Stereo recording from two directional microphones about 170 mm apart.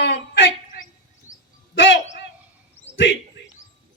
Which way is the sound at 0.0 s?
90° left.